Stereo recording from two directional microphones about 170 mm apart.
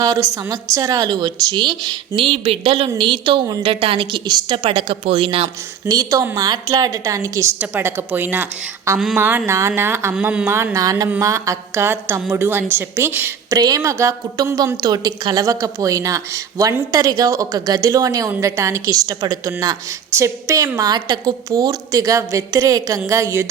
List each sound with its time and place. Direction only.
0.0 s a woman's voice: 20° right (ahead or behind)
5.8 s a woman's voice: 20° right (ahead or behind)